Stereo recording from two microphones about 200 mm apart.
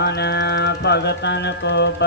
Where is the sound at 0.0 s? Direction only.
55° left (ahead or behind).